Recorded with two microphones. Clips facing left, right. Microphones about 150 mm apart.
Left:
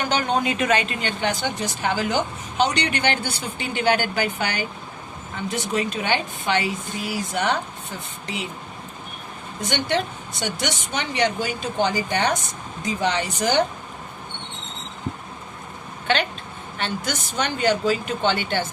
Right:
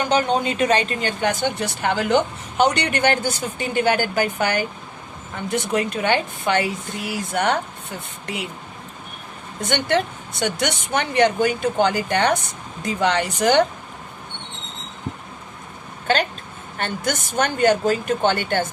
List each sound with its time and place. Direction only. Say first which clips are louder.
0.1 s speech: right 3 dB; 30° right (ahead or behind); by 4.6 s 50° right (ahead or behind)
5.5 s a woman's voice: right 3 dB; 60° right (ahead or behind)
9.6 s a woman's voice: right 3 dB; 55° right (ahead or behind)
16.1 s a woman's voice: right 2 dB; 40° right (ahead or behind)